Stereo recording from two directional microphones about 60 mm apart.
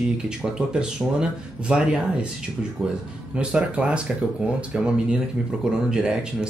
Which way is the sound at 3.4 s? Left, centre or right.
Centre.